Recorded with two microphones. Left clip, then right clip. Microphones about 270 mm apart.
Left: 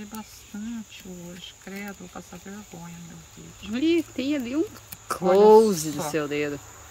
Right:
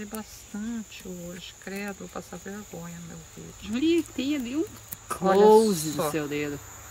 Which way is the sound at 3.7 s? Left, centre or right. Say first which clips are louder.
Left 1 dB; centre.